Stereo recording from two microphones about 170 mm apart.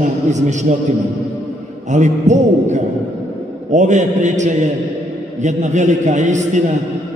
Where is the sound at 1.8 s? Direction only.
45° right (ahead or behind).